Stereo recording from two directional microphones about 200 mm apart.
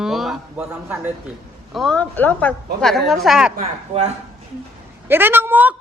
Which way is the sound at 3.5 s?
35° right (ahead or behind).